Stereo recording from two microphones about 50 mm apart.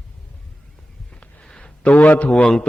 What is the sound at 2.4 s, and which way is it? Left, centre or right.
Speech, centre.